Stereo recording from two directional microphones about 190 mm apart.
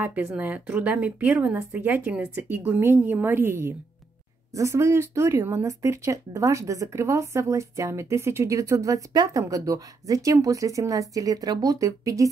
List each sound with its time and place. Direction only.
0.0 s speech: 10° right (ahead or behind)